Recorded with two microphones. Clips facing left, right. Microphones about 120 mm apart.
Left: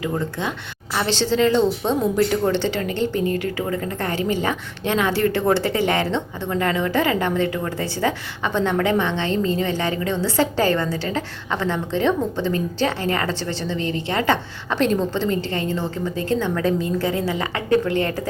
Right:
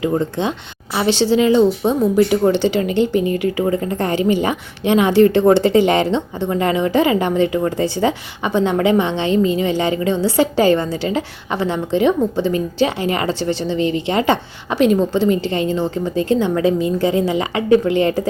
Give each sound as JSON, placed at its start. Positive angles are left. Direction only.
{"t": 0.0, "sound": "speech", "side_deg": -25}
{"t": 0.9, "sound": "a woman's voice", "side_deg": -15}